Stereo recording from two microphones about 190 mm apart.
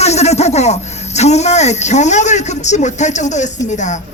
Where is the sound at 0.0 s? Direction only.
35° left (ahead or behind).